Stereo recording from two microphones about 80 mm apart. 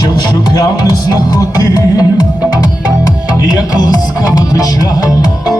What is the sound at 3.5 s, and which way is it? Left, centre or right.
Music, left.